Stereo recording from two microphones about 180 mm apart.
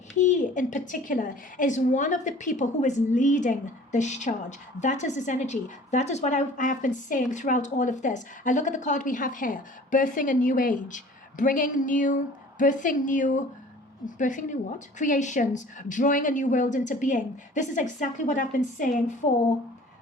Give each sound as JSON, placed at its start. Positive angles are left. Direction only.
{"t": 0.2, "sound": "a woman's voice", "side_deg": 45}